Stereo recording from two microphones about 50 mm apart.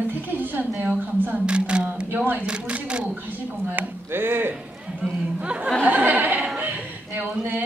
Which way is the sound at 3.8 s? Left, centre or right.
Right.